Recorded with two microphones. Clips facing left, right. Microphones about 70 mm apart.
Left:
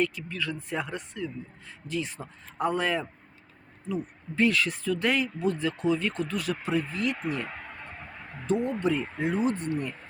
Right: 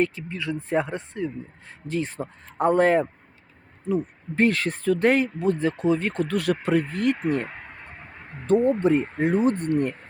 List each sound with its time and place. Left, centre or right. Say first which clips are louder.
0.0 s speech: right 4 dB; right
4.4 s speech: right 3 dB; right
7.7 s a sound: even; centre
8.6 s speech: right 7 dB; right